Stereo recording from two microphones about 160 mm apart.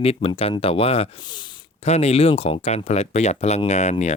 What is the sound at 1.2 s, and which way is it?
Speech, 25° left (ahead or behind).